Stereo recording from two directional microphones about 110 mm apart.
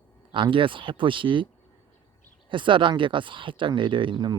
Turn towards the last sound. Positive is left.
turn(degrees=-45)  # may be behind; listen again after turning